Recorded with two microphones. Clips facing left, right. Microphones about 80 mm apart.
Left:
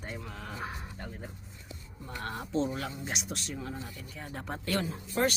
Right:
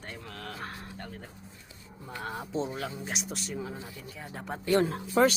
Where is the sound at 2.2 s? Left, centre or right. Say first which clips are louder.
Left 2 dB; centre.